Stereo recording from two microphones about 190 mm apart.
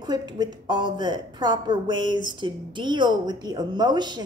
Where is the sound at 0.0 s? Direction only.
20° right (ahead or behind).